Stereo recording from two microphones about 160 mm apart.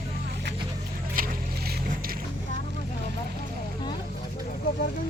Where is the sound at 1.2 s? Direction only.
60° right (ahead or behind).